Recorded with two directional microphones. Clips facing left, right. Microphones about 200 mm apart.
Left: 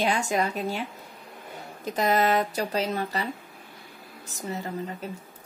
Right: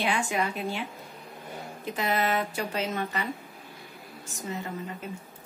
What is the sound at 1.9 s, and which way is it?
A woman's voice, 40° left (ahead or behind).